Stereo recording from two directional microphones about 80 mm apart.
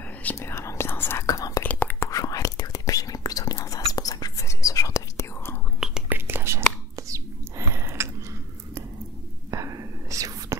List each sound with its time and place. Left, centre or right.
0.4 s whispering: left
1.2 s whispering: left
1.6 s whispering: left
2.0 s whispering: left
6.0 s whispering: right
9.5 s whispering: right